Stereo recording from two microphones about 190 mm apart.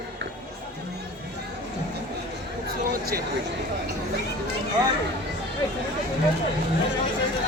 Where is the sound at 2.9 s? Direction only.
50° right (ahead or behind).